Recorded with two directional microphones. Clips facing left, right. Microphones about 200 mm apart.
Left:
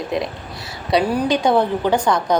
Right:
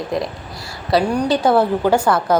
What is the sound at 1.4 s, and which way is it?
Speech, 5° right (ahead or behind).